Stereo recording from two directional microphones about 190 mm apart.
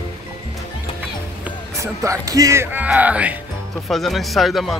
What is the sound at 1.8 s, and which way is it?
Speech, 15° right (ahead or behind).